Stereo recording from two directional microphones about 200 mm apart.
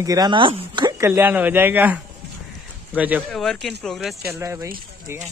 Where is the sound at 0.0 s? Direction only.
20° right (ahead or behind); by 4.3 s centre (ahead or behind).